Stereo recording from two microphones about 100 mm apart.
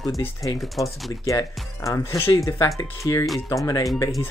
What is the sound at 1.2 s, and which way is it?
Speech, 35° left (ahead or behind).